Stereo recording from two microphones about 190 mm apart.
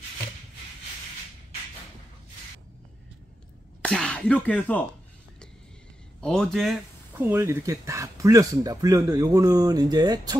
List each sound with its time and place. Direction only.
3.8 s speech: 5° left (ahead or behind)
6.2 s speech: 5° left (ahead or behind); by 10.3 s 20° right (ahead or behind)